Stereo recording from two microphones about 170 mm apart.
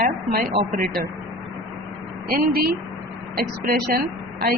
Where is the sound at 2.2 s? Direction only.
60° right (ahead or behind).